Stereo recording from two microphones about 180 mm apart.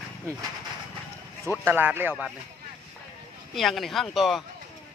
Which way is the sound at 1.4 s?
15° left (ahead or behind).